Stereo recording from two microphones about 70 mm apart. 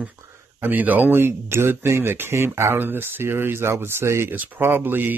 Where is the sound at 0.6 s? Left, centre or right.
Right.